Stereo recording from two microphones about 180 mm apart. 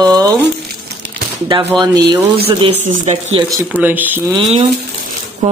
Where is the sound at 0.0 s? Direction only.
20° right (ahead or behind).